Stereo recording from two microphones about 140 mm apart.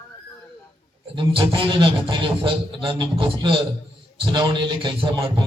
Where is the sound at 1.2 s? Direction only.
35° right (ahead or behind).